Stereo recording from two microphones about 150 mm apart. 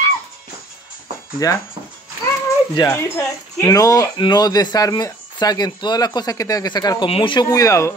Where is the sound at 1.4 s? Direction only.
25° left (ahead or behind).